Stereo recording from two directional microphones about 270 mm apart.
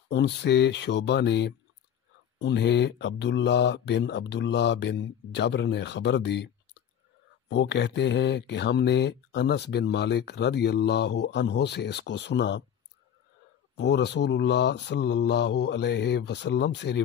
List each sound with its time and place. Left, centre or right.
0.1 s speech: left
13.7 s speech: left